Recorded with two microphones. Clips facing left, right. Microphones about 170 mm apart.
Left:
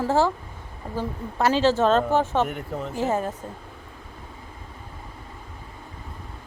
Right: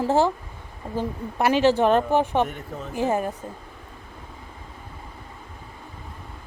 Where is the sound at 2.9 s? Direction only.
15° right (ahead or behind).